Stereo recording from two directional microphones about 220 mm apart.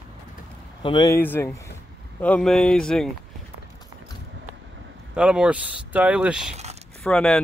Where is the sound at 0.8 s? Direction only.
15° left (ahead or behind).